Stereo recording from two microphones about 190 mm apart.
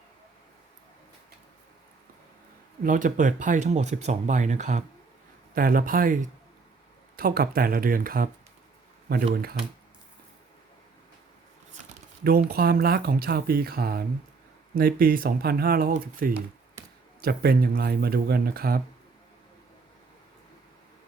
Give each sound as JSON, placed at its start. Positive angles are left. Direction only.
{"t": 2.8, "sound": "speech", "side_deg": -45}
{"t": 7.2, "sound": "speech", "side_deg": -50}
{"t": 12.2, "sound": "speech", "side_deg": -55}